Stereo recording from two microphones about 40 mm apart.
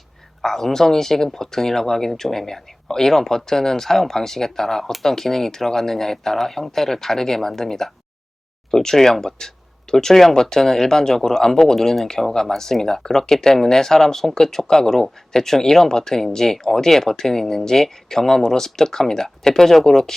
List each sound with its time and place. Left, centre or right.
0.4 s speech: centre